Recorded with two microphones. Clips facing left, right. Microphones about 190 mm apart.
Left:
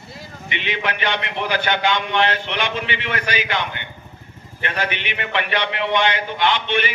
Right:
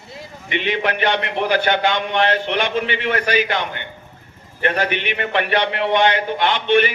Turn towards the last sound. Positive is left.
turn(degrees=-45)  # may be behind; listen again after turning